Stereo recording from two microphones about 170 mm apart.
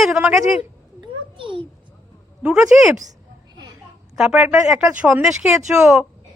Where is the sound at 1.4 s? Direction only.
30° right (ahead or behind).